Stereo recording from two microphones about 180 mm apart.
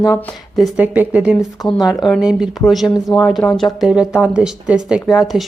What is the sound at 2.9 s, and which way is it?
Speech, 20° left (ahead or behind).